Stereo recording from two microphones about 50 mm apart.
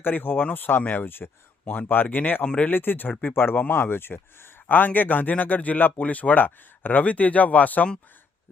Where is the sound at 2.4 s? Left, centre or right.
Left.